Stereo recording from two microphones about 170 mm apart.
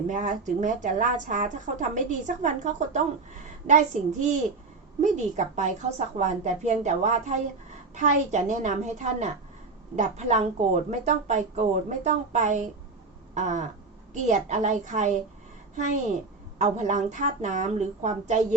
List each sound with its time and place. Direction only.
0.1 s a woman's voice: 45° right (ahead or behind)